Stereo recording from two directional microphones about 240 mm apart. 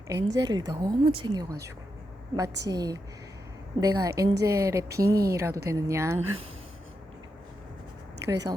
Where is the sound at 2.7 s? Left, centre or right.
Centre.